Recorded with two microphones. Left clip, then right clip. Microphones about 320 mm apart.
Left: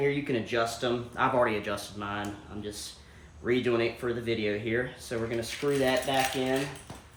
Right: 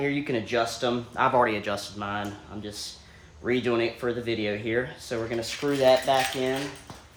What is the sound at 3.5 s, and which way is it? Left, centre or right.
Speech, centre.